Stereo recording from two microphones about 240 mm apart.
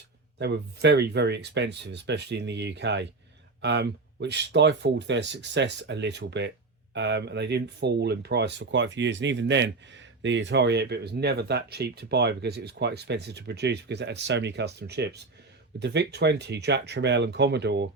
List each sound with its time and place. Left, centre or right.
0.3 s speech: right